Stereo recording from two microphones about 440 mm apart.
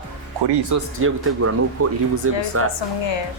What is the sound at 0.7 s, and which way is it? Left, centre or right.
Speech, right.